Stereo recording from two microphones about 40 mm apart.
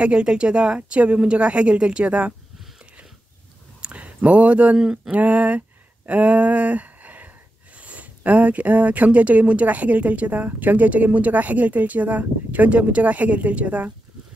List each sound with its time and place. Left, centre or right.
0.0 s speech: right
3.8 s a sound: right
4.7 s speech: centre
5.1 s speech: right
6.0 s a sound: right
7.7 s speech: right